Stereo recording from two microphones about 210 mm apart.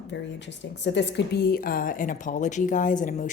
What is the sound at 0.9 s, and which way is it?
A woman's voice, 55° left (ahead or behind).